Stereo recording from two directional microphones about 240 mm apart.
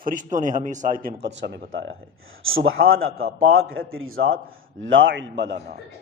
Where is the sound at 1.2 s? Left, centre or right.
Right.